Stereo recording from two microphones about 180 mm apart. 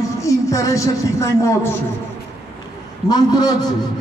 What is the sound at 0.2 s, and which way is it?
A woman's voice, 15° left (ahead or behind).